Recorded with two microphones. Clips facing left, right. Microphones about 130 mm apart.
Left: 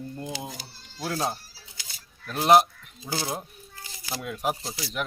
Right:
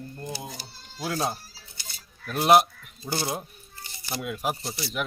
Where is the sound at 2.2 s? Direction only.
10° right (ahead or behind).